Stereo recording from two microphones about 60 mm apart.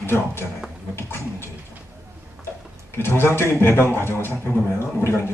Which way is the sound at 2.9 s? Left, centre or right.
Left.